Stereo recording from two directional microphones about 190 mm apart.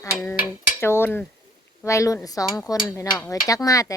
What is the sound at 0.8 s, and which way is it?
Dishes, 10° left (ahead or behind).